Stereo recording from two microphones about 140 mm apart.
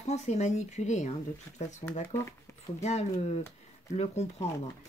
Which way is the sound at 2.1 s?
20° left (ahead or behind).